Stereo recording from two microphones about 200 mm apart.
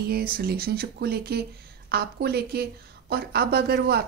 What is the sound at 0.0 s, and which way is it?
A woman's voice, 50° right (ahead or behind).